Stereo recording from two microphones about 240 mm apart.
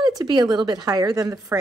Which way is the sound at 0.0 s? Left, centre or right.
Centre.